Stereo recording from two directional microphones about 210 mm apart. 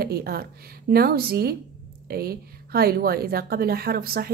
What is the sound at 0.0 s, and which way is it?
A woman's voice, 50° right (ahead or behind).